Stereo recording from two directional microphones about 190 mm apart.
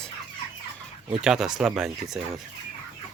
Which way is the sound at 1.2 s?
5° right (ahead or behind).